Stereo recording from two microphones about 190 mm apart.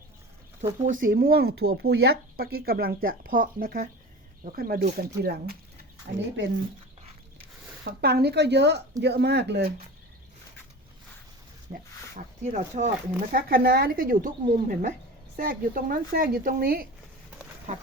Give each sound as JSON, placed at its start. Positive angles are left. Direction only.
{"t": 0.9, "sound": "speech", "side_deg": -45}
{"t": 6.1, "sound": "speech", "side_deg": -70}
{"t": 7.9, "sound": "speech", "side_deg": -55}
{"t": 11.7, "sound": "speech", "side_deg": -40}
{"t": 13.3, "sound": "speech", "side_deg": -50}
{"t": 17.7, "sound": "speech", "side_deg": -40}